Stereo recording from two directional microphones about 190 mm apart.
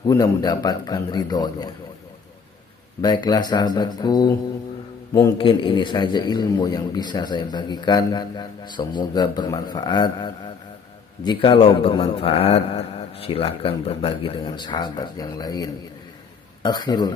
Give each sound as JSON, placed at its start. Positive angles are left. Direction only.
{"t": 0.0, "sound": "a man's voice", "side_deg": 20}
{"t": 3.0, "sound": "a man's voice", "side_deg": 20}